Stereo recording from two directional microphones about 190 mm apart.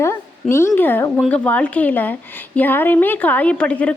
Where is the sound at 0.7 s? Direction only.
10° left (ahead or behind).